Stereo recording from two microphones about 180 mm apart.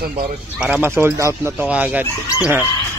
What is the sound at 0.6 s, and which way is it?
Speech, 5° right (ahead or behind).